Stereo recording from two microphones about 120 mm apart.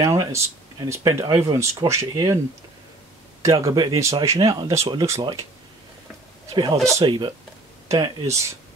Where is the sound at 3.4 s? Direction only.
25° right (ahead or behind).